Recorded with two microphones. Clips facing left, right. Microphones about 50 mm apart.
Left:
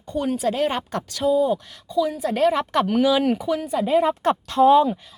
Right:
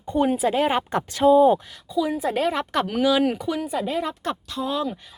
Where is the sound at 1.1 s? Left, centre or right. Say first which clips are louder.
Right 4 dB; right.